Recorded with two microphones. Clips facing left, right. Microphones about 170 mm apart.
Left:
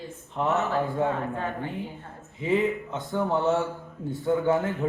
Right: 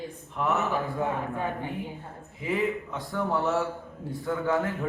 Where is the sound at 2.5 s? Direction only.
20° left (ahead or behind).